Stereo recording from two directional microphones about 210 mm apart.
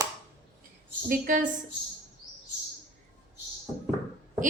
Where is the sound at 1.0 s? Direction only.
40° right (ahead or behind).